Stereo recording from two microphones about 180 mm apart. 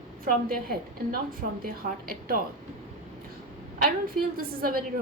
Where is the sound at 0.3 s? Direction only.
55° right (ahead or behind).